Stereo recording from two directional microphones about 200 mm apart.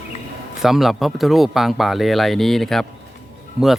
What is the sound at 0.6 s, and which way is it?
Speech, centre (ahead or behind).